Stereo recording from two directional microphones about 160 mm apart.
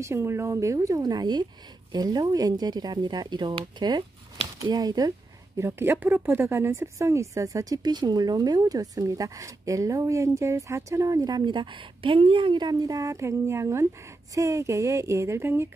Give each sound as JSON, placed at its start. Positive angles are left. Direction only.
{"t": 0.0, "sound": "speech", "side_deg": -15}